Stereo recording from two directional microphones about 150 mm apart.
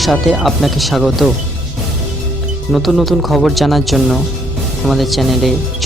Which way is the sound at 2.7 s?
Centre (ahead or behind).